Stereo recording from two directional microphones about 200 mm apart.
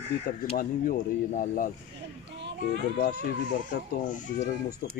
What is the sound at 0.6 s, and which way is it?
Speech, 45° left (ahead or behind).